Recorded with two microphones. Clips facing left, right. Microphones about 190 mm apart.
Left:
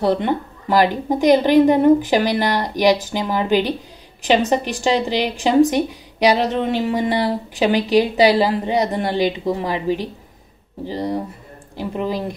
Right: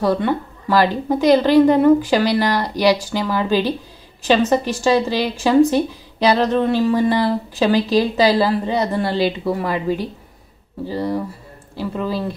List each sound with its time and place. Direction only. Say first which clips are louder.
0.0 s a woman's voice: even; 20° left (ahead or behind)